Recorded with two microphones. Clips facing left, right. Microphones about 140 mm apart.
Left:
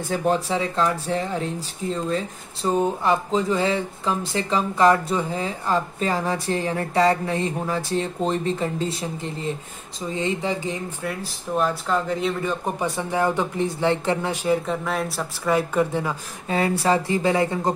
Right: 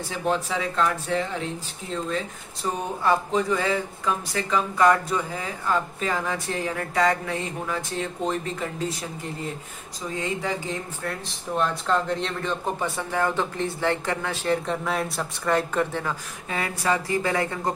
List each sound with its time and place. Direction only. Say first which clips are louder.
0.1 s speech: left 6 dB; 45° left (ahead or behind)
0.5 s speech: left 2 dB; 35° left (ahead or behind)
3.0 s speech: left 1 dB; 20° left (ahead or behind)
10.1 s speech: left 3 dB; 20° left (ahead or behind)
11.1 s a man's voice: left 2 dB; 5° left (ahead or behind)
14.5 s speech: left 1 dB; centre (ahead or behind)
16.4 s speech: left 5 dB; 30° left (ahead or behind)